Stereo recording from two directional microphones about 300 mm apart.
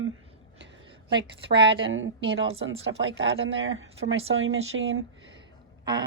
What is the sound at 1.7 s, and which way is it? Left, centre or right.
Speech, right.